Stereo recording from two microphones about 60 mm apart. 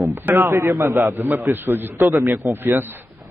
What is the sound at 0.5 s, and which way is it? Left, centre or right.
Speech, right.